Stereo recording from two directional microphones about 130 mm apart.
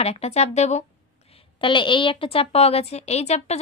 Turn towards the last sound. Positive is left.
turn(degrees=55)  # may be behind; listen again after turning